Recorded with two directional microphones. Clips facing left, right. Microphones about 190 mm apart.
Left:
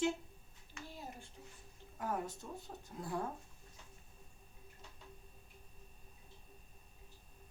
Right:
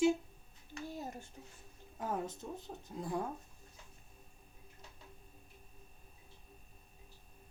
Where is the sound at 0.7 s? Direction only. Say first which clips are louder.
Right 6 dB; 45° right (ahead or behind).